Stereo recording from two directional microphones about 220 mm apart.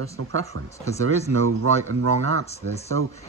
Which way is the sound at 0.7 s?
15° left (ahead or behind).